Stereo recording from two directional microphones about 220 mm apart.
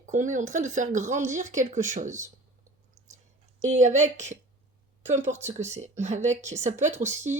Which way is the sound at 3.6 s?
35° right (ahead or behind).